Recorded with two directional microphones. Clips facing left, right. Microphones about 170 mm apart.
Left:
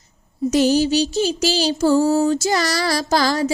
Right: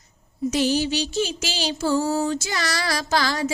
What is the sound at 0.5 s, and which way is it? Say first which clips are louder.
Music: left 6 dB; 40° left (ahead or behind).